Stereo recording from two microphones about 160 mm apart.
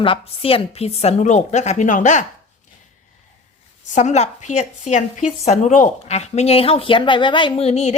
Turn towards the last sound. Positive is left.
turn(degrees=45)  # may be behind; listen again after turning